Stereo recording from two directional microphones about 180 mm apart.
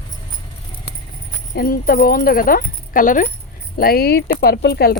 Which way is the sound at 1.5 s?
55° left (ahead or behind).